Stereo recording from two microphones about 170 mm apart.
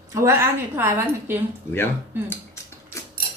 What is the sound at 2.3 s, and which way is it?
Dishes, 15° left (ahead or behind).